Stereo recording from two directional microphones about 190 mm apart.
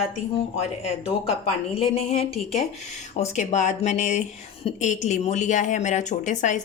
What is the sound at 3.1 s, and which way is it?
Speech, 35° left (ahead or behind).